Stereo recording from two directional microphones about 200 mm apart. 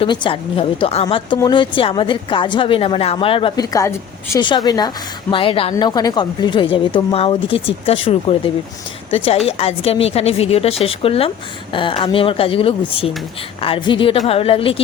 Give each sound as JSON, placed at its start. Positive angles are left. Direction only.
{"t": 0.0, "sound": "a woman's voice", "side_deg": 25}